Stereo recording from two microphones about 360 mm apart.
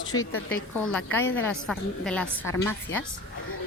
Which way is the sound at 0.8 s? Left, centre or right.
Centre.